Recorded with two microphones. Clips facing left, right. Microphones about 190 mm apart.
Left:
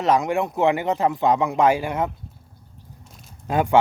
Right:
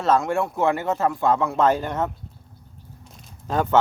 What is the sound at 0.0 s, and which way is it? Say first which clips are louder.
Speech: left 1 dB; 15° left (ahead or behind).